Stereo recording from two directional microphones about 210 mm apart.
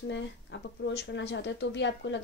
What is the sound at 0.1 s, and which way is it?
Speech, 55° left (ahead or behind).